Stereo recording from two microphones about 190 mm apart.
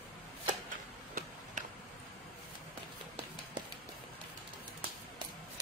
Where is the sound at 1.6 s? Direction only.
40° right (ahead or behind).